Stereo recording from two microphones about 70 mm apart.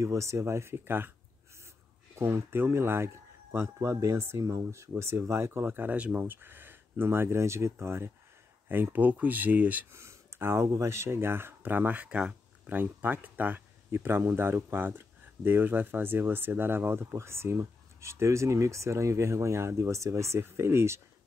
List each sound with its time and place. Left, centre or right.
0.0 s speech: right
2.1 s speech: right
9.9 s a sound: right
10.8 s speech: right